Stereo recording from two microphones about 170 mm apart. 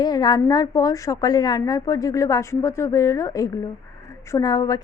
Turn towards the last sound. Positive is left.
turn(degrees=20)  # may be behind; listen again after turning